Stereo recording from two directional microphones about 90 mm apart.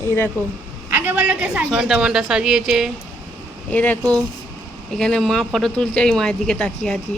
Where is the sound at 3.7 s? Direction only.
15° left (ahead or behind).